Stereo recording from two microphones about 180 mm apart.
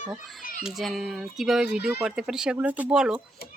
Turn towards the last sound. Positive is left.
turn(degrees=-5)  # may be behind; listen again after turning